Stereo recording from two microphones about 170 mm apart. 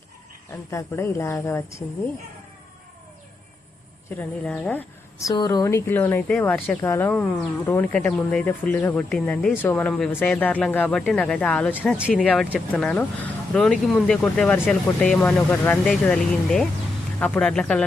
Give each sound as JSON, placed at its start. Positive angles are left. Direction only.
{"t": 0.7, "sound": "speech", "side_deg": 15}
{"t": 4.2, "sound": "speech", "side_deg": 5}
{"t": 5.3, "sound": "speech", "side_deg": 25}
{"t": 11.9, "sound": "speech", "side_deg": -5}
{"t": 12.2, "sound": "speech", "side_deg": 5}